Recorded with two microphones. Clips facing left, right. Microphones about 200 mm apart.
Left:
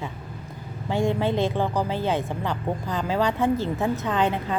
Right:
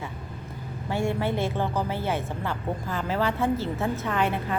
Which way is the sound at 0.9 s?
15° left (ahead or behind).